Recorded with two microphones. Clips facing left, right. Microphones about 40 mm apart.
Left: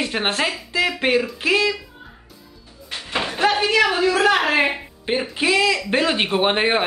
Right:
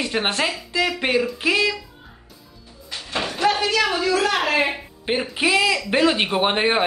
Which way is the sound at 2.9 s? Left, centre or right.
Left.